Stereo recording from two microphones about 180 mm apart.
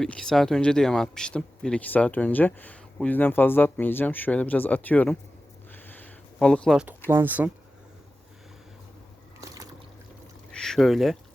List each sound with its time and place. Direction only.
0.0 s speech: 5° left (ahead or behind)
5.7 s a sound: 10° left (ahead or behind)
7.1 s speech: 10° right (ahead or behind)
10.5 s speech: 5° left (ahead or behind)